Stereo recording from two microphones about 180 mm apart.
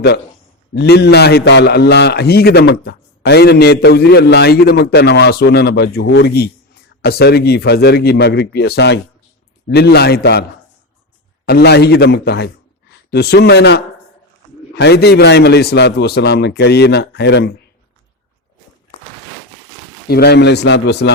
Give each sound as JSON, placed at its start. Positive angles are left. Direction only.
{"t": 0.7, "sound": "a man's voice", "side_deg": 65}
{"t": 11.4, "sound": "a man's voice", "side_deg": 65}
{"t": 20.1, "sound": "a man's voice", "side_deg": 60}